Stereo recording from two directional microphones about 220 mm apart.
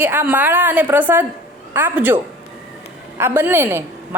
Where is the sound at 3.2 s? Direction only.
10° right (ahead or behind).